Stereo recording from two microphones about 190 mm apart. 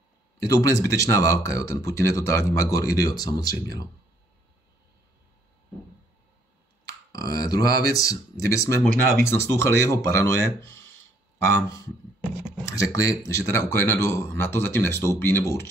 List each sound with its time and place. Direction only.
0.4 s speech: 15° left (ahead or behind)
7.1 s speech: 20° left (ahead or behind)